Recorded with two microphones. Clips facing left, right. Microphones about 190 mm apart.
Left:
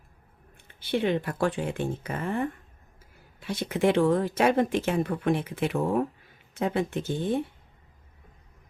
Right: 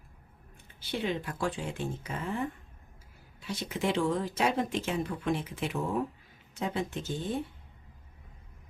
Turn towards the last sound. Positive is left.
turn(degrees=55)  # may be behind; listen again after turning